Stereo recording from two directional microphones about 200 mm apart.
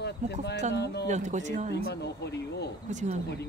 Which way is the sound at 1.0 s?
35° right (ahead or behind).